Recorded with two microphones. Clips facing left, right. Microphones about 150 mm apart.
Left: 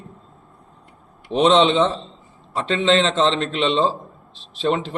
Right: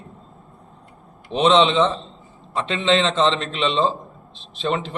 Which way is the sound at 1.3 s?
35° left (ahead or behind).